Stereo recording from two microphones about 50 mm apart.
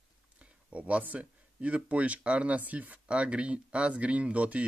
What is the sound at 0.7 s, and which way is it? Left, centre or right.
Speech, right.